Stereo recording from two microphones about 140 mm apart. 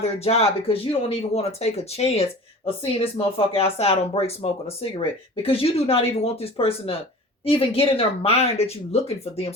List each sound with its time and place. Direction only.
0.0 s speech: 45° left (ahead or behind)